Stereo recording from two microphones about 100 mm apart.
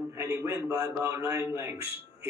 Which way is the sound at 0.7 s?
30° right (ahead or behind).